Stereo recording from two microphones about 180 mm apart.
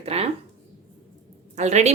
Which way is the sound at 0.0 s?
35° right (ahead or behind).